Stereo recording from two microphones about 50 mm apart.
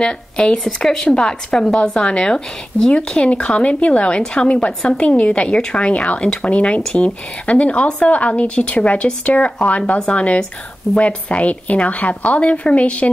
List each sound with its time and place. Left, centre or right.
0.0 s speech: centre